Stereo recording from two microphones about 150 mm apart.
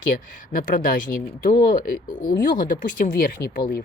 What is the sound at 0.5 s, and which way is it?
Speech, 70° left (ahead or behind).